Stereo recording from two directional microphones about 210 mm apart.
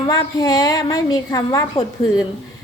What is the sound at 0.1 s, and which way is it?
A woman's voice, 20° left (ahead or behind).